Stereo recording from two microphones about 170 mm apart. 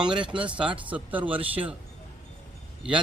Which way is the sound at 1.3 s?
30° right (ahead or behind).